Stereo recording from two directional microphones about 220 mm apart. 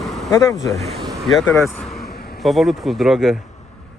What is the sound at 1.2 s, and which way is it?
Speech, centre (ahead or behind).